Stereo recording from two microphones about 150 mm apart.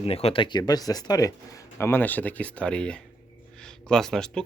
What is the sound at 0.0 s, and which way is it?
Speech, 40° left (ahead or behind).